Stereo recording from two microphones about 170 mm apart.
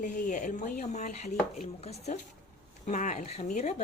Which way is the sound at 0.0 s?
50° left (ahead or behind).